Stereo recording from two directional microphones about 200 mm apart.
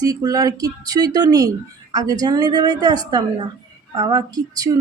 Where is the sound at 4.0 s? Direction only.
20° right (ahead or behind).